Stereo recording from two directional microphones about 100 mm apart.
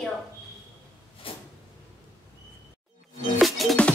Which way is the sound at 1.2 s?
65° left (ahead or behind).